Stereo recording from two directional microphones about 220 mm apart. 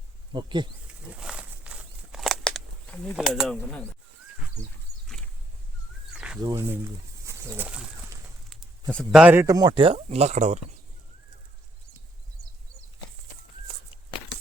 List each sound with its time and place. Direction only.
0.3 s speech: 20° right (ahead or behind)
1.2 s walk: 5° right (ahead or behind)
6.1 s a sound: 5° right (ahead or behind)
6.4 s speech: 15° right (ahead or behind)
7.3 s bird: 10° right (ahead or behind)
8.9 s speech: centre (ahead or behind); by 10.6 s 30° right (ahead or behind)